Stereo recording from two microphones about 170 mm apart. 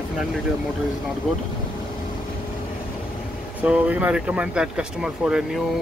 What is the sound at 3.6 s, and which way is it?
Speech, 10° right (ahead or behind).